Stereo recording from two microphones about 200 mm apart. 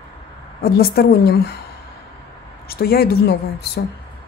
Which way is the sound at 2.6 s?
50° left (ahead or behind).